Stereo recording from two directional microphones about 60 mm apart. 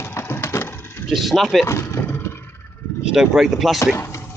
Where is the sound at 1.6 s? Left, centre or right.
Left.